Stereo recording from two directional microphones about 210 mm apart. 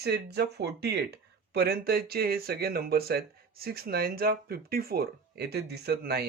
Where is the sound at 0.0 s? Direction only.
50° right (ahead or behind).